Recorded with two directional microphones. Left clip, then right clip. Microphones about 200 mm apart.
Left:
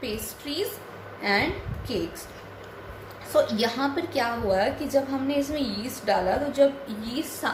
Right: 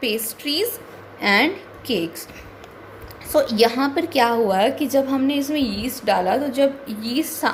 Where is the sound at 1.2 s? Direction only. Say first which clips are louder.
Right 7 dB; 45° right (ahead or behind).